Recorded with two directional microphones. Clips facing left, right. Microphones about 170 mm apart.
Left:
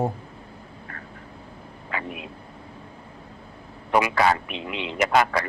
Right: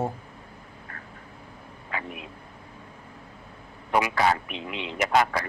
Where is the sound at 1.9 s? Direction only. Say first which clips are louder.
Left 2 dB; 85° left.